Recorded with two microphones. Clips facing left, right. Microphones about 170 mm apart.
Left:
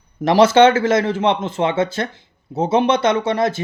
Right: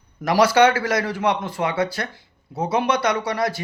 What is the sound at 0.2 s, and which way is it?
Speech, 25° left (ahead or behind).